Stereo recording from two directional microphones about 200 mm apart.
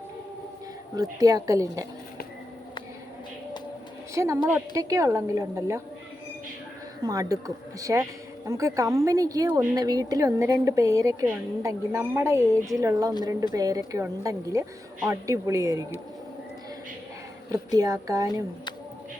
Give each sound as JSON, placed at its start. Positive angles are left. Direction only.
{"t": 1.2, "sound": "a woman's voice", "side_deg": -15}
{"t": 4.1, "sound": "a woman's voice", "side_deg": -15}
{"t": 7.0, "sound": "a woman's voice", "side_deg": -20}
{"t": 17.5, "sound": "a woman's voice", "side_deg": -15}